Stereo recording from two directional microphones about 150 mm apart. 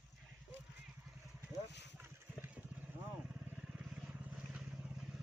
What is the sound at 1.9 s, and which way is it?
Vehicle, 15° right (ahead or behind).